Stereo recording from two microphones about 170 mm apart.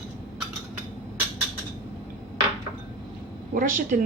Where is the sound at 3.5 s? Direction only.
50° right (ahead or behind).